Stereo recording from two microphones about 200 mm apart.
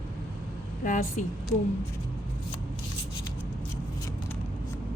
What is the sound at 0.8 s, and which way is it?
Speech, 40° left (ahead or behind).